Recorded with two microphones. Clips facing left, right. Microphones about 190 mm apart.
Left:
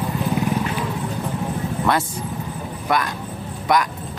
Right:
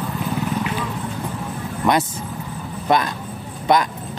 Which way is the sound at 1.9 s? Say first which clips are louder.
Right 4 dB; 15° right (ahead or behind).